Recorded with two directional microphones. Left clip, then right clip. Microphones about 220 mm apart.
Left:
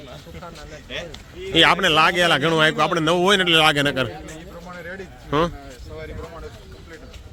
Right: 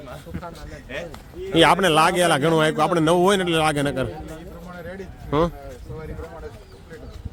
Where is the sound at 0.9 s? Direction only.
35° right (ahead or behind).